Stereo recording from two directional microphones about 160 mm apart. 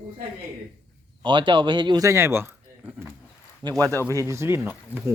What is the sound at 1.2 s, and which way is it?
Speech, 30° right (ahead or behind).